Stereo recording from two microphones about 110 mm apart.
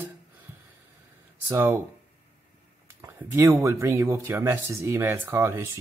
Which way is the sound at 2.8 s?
25° right (ahead or behind).